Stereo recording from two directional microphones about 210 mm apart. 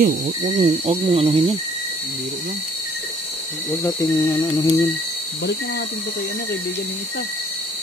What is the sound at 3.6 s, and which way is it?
Speech, 15° left (ahead or behind).